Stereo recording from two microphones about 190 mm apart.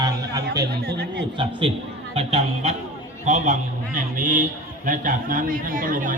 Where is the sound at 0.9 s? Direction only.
60° right (ahead or behind).